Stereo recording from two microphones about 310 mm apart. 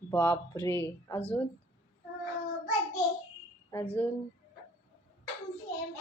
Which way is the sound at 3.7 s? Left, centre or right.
Centre.